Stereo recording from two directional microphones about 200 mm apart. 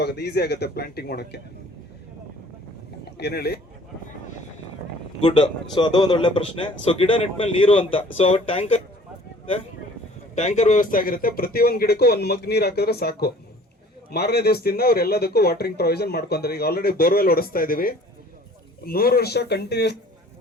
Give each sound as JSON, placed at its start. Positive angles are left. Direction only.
{"t": 0.0, "sound": "speech", "side_deg": 55}
{"t": 3.0, "sound": "speech", "side_deg": 55}
{"t": 5.2, "sound": "a man's voice", "side_deg": 25}
{"t": 10.3, "sound": "speech", "side_deg": 35}